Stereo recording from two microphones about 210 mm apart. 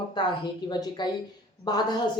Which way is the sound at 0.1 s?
20° left (ahead or behind).